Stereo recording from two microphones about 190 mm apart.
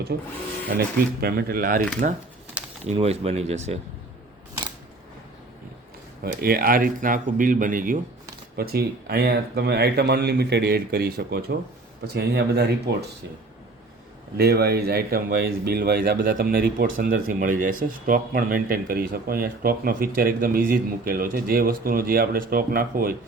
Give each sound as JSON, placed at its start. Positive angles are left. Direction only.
{"t": 0.1, "sound": "speech", "side_deg": -55}
{"t": 2.8, "sound": "speech", "side_deg": -30}
{"t": 6.2, "sound": "speech", "side_deg": -50}
{"t": 14.3, "sound": "speech", "side_deg": -55}